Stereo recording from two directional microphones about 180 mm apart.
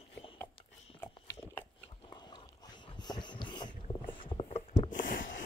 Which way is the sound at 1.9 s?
25° left (ahead or behind).